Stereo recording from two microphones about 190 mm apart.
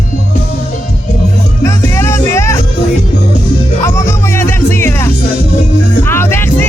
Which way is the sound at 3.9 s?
15° left (ahead or behind).